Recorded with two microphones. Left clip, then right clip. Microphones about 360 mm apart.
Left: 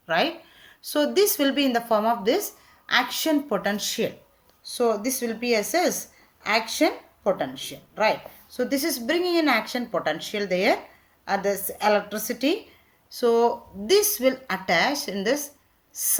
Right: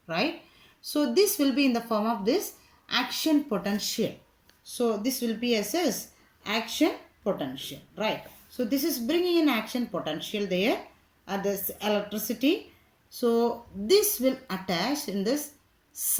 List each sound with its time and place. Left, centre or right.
0.8 s speech: left